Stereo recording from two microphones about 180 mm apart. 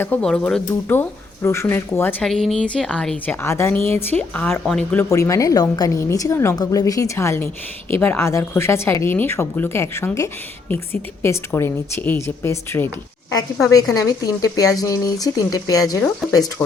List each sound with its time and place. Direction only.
0.0 s speech: 5° left (ahead or behind)
4.9 s speech: 15° left (ahead or behind)